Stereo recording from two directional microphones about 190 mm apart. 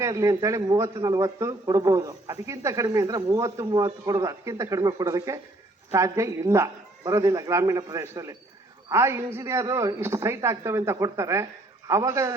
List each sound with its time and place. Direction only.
0.0 s a man's voice: 15° right (ahead or behind)